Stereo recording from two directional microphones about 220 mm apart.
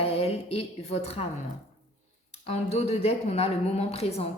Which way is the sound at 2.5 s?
30° left (ahead or behind).